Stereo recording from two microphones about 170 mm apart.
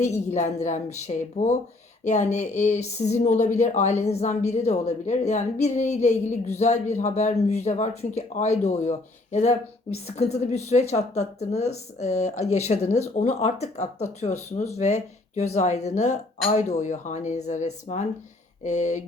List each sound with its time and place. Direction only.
0.0 s speech: 40° left (ahead or behind)